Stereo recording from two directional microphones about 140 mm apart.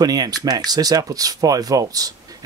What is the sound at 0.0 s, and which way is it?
Speech, 30° right (ahead or behind).